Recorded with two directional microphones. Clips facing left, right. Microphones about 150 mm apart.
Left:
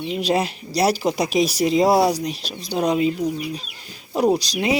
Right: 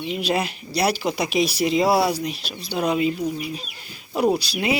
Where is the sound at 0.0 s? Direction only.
35° left (ahead or behind).